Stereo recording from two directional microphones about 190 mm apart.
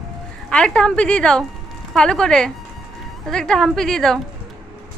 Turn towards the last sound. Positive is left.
turn(degrees=0)  # may be behind; listen again after turning